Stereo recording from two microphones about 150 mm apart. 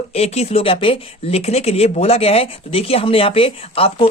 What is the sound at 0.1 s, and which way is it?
Speech, 45° left (ahead or behind).